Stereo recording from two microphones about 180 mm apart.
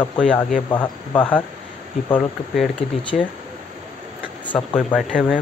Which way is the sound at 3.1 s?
45° left (ahead or behind).